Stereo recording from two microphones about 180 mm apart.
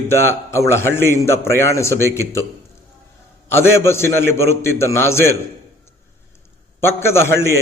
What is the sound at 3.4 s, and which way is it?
A man's voice, 15° left (ahead or behind).